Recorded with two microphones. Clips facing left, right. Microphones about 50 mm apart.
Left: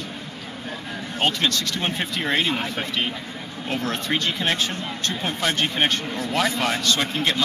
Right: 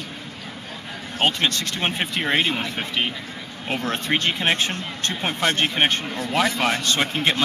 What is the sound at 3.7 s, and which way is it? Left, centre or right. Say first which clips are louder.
Speech: right 1 dB; right.